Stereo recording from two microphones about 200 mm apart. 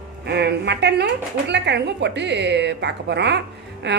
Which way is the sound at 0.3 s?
55° right (ahead or behind).